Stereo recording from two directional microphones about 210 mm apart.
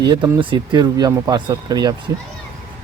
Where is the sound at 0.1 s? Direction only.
20° right (ahead or behind).